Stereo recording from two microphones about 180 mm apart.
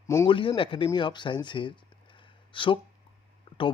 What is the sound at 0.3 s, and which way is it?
Speech, 30° left (ahead or behind).